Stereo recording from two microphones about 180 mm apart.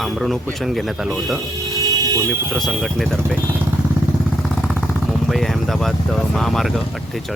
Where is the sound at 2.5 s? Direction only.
Centre (ahead or behind).